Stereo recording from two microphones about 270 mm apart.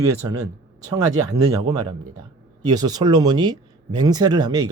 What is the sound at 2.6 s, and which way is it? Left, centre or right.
Speech, centre.